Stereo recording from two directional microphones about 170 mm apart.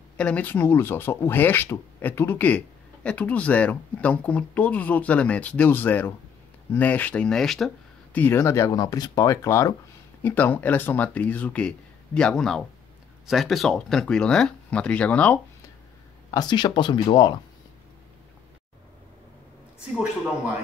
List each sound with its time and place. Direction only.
0.2 s speech: 10° left (ahead or behind)
16.3 s speech: 25° left (ahead or behind)